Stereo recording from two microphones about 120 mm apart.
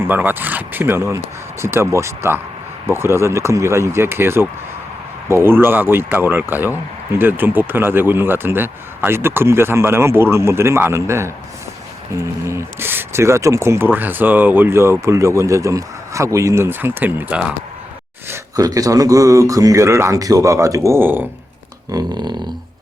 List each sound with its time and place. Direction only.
0.0 s speech: 15° right (ahead or behind)
18.3 s speech: 30° right (ahead or behind)
21.9 s a sound: 35° right (ahead or behind)